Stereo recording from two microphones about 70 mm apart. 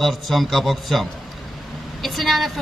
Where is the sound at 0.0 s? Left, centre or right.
Centre.